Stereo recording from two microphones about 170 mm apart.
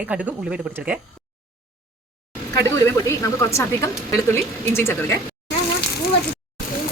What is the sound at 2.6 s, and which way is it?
Speech, 15° left (ahead or behind).